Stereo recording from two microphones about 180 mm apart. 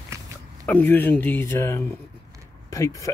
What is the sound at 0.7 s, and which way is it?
Speech, 10° left (ahead or behind).